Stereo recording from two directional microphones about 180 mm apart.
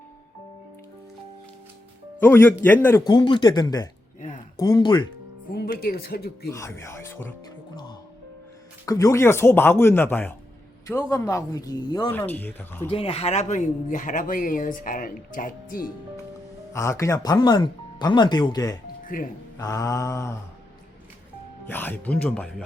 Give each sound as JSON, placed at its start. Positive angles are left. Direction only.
{"t": 2.2, "sound": "speech", "side_deg": 10}
{"t": 3.1, "sound": "speech", "side_deg": 25}
{"t": 5.5, "sound": "speech", "side_deg": 55}
{"t": 6.5, "sound": "speech", "side_deg": 15}
{"t": 8.9, "sound": "speech", "side_deg": 15}
{"t": 12.1, "sound": "speech", "side_deg": 10}
{"t": 12.9, "sound": "speech", "side_deg": 35}
{"t": 16.7, "sound": "speech", "side_deg": 15}
{"t": 19.0, "sound": "speech", "side_deg": 50}
{"t": 19.5, "sound": "speech", "side_deg": 20}
{"t": 21.7, "sound": "speech", "side_deg": 10}